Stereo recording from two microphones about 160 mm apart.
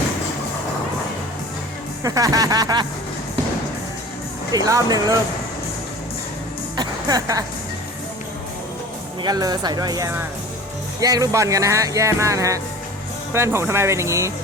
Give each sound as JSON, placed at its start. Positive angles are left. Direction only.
{"t": 2.0, "sound": "speech", "side_deg": -20}
{"t": 4.5, "sound": "speech", "side_deg": -20}
{"t": 6.7, "sound": "music", "side_deg": -25}
{"t": 9.2, "sound": "speech", "side_deg": -25}